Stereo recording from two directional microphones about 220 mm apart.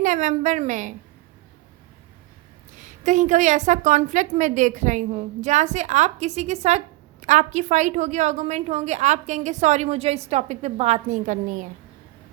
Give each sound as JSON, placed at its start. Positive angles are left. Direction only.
{"t": 0.0, "sound": "a woman's voice", "side_deg": -35}
{"t": 2.7, "sound": "a woman's voice", "side_deg": -35}